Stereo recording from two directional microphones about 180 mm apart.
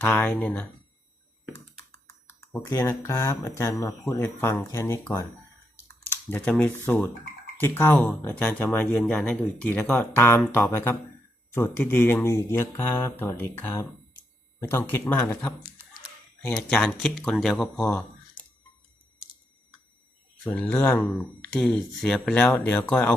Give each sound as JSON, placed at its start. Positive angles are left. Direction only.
{"t": 0.0, "sound": "speech", "side_deg": 10}
{"t": 2.5, "sound": "speech", "side_deg": 10}
{"t": 5.7, "sound": "typing", "side_deg": 10}
{"t": 7.6, "sound": "speech", "side_deg": 10}
{"t": 20.4, "sound": "speech", "side_deg": 5}